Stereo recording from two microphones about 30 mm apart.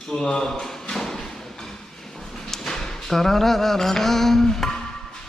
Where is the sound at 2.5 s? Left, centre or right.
Centre.